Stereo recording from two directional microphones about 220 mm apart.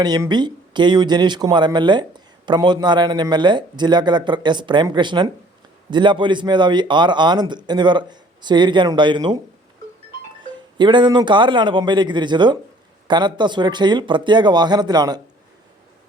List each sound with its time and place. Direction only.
0.0 s speech: 20° right (ahead or behind)
10.4 s speech: 20° right (ahead or behind)